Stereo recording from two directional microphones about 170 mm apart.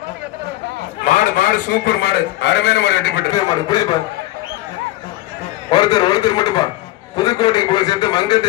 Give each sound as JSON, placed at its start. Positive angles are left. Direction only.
{"t": 1.0, "sound": "a man's voice", "side_deg": 50}
{"t": 3.3, "sound": "a man's voice", "side_deg": 20}
{"t": 5.7, "sound": "a man's voice", "side_deg": 25}